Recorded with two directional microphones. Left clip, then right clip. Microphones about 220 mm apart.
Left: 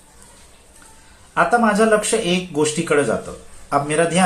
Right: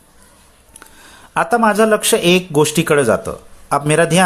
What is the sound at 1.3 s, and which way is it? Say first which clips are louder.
Speech: right 2 dB; 50° right (ahead or behind).